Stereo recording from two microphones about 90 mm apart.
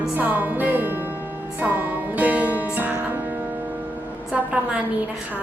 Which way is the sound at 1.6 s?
20° right (ahead or behind).